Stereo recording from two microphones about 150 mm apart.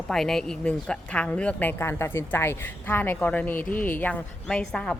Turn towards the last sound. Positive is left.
turn(degrees=5)  # may be behind; listen again after turning